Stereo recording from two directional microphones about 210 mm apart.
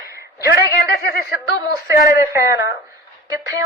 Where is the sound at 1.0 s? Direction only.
45° left (ahead or behind).